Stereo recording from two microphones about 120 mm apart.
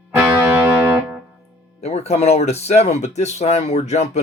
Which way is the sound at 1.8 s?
60° left (ahead or behind).